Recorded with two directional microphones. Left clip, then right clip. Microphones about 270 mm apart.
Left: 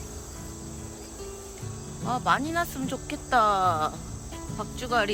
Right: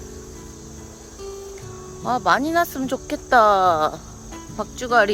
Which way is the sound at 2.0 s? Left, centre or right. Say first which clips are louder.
Right 7 dB; centre.